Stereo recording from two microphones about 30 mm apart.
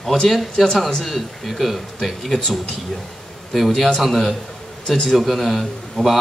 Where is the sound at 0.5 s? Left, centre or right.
Centre.